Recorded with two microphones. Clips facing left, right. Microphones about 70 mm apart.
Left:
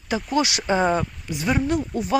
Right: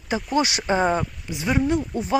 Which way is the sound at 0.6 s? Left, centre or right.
Centre.